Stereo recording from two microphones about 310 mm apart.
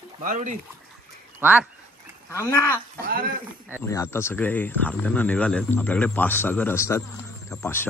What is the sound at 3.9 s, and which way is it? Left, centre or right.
Speech, centre.